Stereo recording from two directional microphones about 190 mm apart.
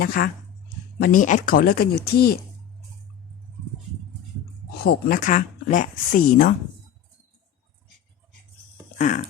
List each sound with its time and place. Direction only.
0.0 s speech: 55° left (ahead or behind)
4.8 s speech: 50° left (ahead or behind)
9.0 s speech: 40° left (ahead or behind)